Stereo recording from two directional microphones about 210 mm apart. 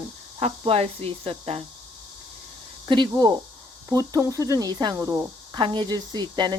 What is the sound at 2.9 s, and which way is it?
Speech, 20° right (ahead or behind).